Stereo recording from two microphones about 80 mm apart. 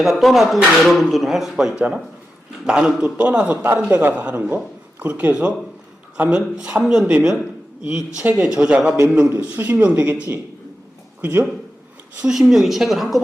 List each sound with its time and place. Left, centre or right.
0.0 s a man's voice: centre; by 11.4 s right
12.2 s speech: centre